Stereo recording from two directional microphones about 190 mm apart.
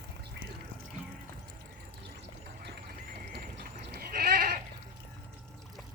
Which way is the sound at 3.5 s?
55° right (ahead or behind).